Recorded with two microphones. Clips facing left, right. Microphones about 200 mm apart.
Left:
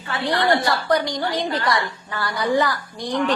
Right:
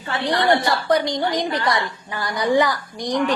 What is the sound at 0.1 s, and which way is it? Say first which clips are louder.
A woman's voice: right 1 dB; 15° right (ahead or behind).